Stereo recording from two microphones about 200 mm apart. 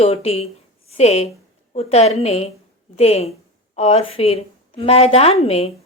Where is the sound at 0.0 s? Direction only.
30° left (ahead or behind).